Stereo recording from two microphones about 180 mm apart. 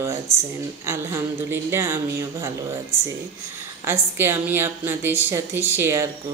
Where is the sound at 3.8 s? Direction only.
10° right (ahead or behind).